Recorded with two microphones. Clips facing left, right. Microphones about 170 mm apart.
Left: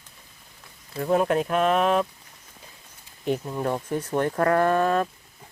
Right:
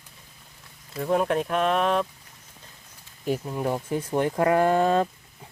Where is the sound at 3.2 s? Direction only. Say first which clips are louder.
Left 1 dB; 5° right (ahead or behind); by 5.1 s 25° right (ahead or behind).